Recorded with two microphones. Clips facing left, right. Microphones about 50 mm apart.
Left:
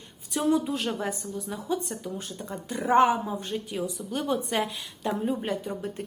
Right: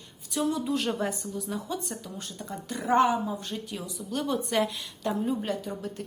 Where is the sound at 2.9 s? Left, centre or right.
Left.